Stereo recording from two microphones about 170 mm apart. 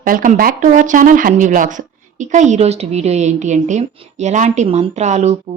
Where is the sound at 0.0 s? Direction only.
55° right (ahead or behind).